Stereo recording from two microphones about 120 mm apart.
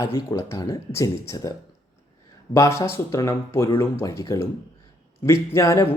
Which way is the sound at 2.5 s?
25° left (ahead or behind).